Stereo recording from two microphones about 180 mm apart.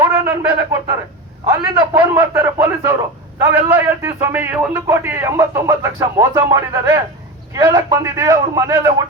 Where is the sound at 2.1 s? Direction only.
15° right (ahead or behind).